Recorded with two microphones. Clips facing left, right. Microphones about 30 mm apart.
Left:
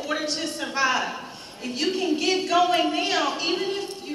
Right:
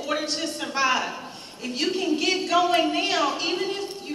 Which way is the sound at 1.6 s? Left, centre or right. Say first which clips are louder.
Even; centre.